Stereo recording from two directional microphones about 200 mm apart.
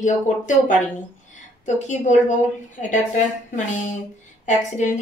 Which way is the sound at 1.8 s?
40° left (ahead or behind).